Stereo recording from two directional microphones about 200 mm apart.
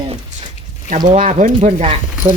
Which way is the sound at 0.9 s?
40° right (ahead or behind).